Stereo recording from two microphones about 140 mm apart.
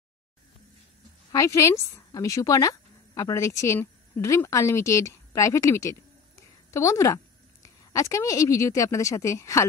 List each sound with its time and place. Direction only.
1.3 s a woman's voice: 25° left (ahead or behind)